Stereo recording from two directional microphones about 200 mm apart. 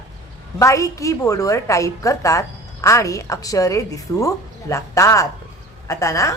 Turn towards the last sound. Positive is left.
turn(degrees=15)  # may be behind; listen again after turning